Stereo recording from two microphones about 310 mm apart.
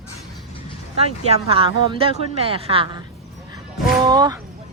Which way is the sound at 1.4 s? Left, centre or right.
Centre.